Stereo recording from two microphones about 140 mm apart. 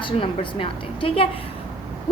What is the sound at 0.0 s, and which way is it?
A woman's voice, 40° left (ahead or behind).